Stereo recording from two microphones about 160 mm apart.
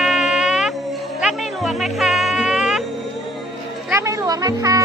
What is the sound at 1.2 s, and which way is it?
Music, centre (ahead or behind).